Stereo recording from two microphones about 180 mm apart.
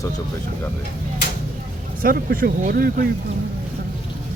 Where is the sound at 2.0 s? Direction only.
55° right (ahead or behind).